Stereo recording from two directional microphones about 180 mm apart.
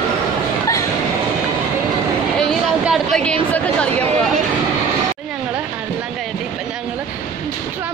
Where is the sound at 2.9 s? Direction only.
5° left (ahead or behind).